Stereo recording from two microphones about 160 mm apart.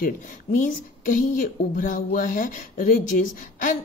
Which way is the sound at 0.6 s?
55° left (ahead or behind).